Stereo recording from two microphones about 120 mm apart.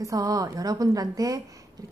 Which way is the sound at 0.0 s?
30° right (ahead or behind).